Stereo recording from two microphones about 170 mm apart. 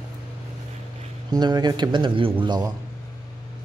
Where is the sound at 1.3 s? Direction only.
25° right (ahead or behind).